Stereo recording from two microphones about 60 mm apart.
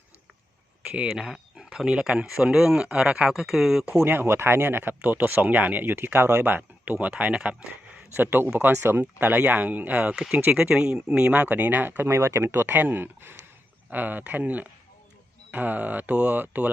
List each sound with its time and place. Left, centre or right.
0.9 s speech: centre
4.0 s speech: right; by 7.5 s centre
8.1 s speech: right
9.2 s speech: right
10.2 s speech: centre; by 12.0 s right
12.0 s speech: right